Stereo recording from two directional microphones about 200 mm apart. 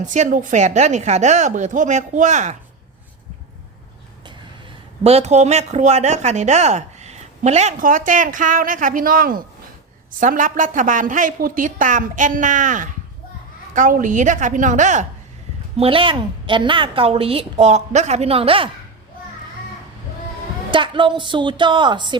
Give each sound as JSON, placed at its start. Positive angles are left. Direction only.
{"t": 0.0, "sound": "speech", "side_deg": -40}
{"t": 5.0, "sound": "speech", "side_deg": -35}
{"t": 15.8, "sound": "a woman's voice", "side_deg": -25}
{"t": 20.7, "sound": "a woman's voice", "side_deg": -25}